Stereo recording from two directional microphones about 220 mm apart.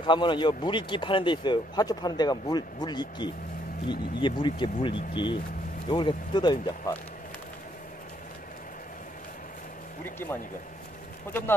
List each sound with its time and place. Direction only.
0.0 s speech: 20° left (ahead or behind)
10.0 s speech: 10° left (ahead or behind)